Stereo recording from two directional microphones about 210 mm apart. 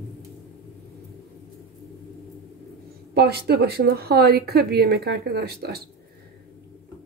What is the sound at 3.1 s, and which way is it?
Speech, 50° right (ahead or behind).